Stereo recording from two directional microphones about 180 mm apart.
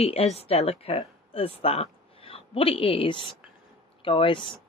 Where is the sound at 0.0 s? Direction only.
35° left (ahead or behind).